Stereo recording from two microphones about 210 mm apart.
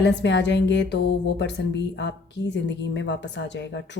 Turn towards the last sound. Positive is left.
turn(degrees=60)  # may be behind; listen again after turning